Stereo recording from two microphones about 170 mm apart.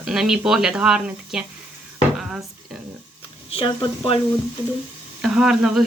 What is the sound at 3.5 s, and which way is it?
Speech, 30° left (ahead or behind).